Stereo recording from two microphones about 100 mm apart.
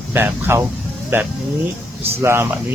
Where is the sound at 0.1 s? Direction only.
25° right (ahead or behind).